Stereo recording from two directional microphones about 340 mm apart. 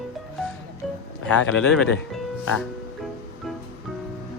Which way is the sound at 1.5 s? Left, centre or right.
Centre.